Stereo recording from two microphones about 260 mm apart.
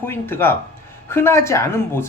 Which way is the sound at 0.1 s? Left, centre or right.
Centre.